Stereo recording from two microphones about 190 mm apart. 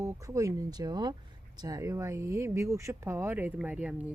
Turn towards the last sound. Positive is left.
turn(degrees=-5)  # may be behind; listen again after turning